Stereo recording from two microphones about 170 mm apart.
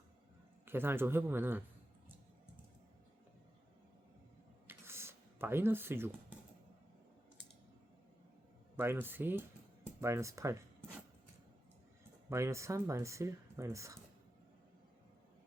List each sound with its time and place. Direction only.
0.6 s speech: 15° right (ahead or behind)
4.6 s a sound: 15° right (ahead or behind)
8.7 s speech: 15° right (ahead or behind)
12.3 s speech: 15° right (ahead or behind)